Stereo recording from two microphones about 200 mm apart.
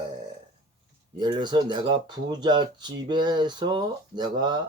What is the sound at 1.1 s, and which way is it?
Speech, 20° right (ahead or behind).